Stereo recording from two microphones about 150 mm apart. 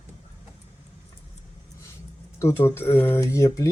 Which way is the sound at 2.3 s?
15° left (ahead or behind).